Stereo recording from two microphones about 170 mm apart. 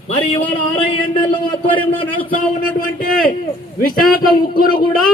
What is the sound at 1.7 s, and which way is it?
Speech, 30° left (ahead or behind).